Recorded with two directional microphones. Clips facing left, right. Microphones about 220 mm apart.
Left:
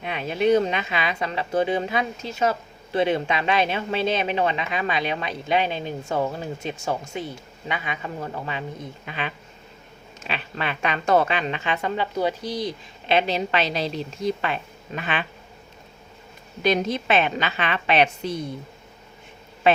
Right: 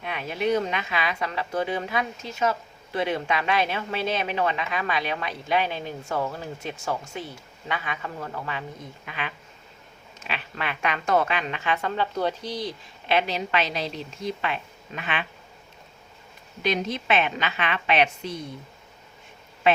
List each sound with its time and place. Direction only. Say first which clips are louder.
0.0 s speech: left 5 dB; 25° left (ahead or behind); by 15.3 s 40° left (ahead or behind)
16.6 s a woman's voice: left 4 dB; 40° left (ahead or behind)